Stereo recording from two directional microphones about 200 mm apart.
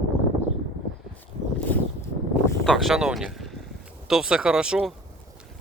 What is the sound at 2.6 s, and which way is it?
Speech, centre (ahead or behind).